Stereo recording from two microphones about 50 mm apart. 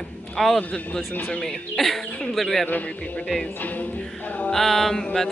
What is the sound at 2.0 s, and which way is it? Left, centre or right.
Speech, left.